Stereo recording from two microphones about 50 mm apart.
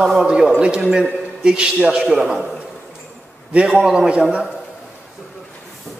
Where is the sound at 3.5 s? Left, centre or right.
Right.